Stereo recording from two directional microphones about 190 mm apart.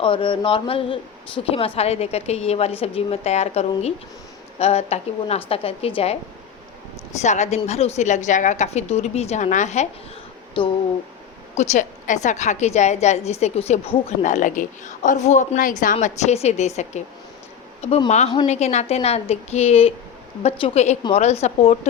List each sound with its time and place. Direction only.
0.0 s mantra: 25° left (ahead or behind)
1.5 s a woman's voice: 30° left (ahead or behind)
7.2 s a woman's voice: 35° left (ahead or behind)
10.6 s mantra: 25° left (ahead or behind)
11.5 s a woman's voice: 35° left (ahead or behind)